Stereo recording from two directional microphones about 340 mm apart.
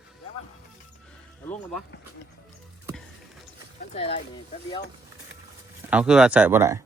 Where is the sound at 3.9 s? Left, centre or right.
Centre.